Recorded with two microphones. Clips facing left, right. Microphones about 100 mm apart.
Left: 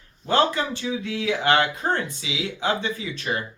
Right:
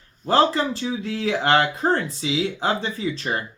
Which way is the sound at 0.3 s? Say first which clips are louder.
Right 3 dB; 35° right (ahead or behind).